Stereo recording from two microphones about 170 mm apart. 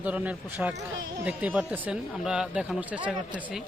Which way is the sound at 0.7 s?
90° right.